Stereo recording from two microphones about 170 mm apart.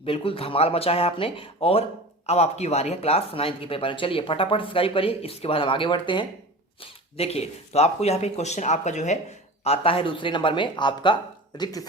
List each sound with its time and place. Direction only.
0.0 s speech: 35° left (ahead or behind)